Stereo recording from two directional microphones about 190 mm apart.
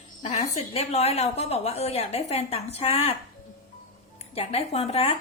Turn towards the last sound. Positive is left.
turn(degrees=30)  # may be behind; listen again after turning